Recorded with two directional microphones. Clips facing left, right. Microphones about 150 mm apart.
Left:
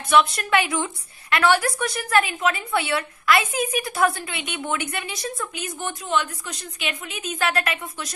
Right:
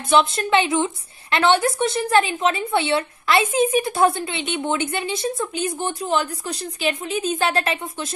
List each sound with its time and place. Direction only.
0.1 s a woman's voice: 25° right (ahead or behind)